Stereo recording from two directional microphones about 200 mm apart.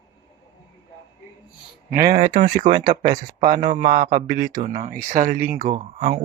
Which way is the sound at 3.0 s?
40° right (ahead or behind).